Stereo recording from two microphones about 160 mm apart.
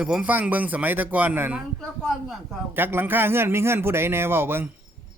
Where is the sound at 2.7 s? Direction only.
15° right (ahead or behind).